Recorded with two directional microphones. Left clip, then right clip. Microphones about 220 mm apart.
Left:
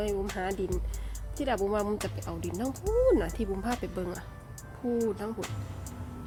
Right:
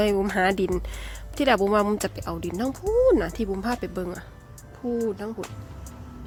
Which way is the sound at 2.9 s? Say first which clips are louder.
Right 5 dB; 25° right (ahead or behind).